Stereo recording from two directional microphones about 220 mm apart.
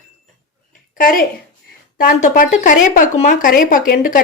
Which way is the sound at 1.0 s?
40° left (ahead or behind).